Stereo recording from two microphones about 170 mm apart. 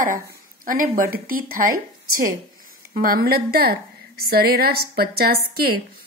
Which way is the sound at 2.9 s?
55° right (ahead or behind).